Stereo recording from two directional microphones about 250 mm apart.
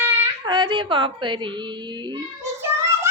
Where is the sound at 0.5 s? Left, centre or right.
Centre.